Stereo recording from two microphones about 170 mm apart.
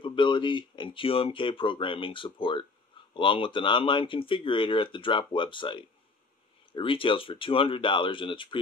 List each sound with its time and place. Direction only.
0.0 s speech: 30° left (ahead or behind)